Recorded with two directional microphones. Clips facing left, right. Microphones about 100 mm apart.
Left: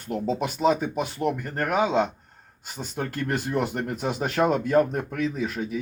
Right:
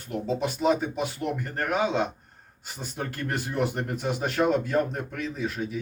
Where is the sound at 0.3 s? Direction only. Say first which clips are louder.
Left 1 dB; 55° left (ahead or behind).